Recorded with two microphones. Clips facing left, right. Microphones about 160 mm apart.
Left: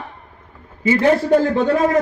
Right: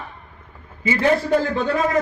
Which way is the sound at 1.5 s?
60° left (ahead or behind).